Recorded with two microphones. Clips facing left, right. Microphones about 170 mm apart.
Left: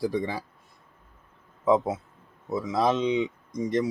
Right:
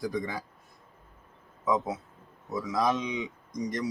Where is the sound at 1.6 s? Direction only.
25° left (ahead or behind).